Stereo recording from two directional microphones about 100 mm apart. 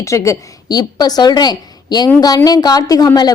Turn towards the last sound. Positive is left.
turn(degrees=40)  # may be behind; listen again after turning